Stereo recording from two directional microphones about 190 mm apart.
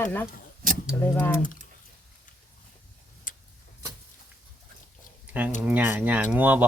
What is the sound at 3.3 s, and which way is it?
Tick-tock, 45° left (ahead or behind).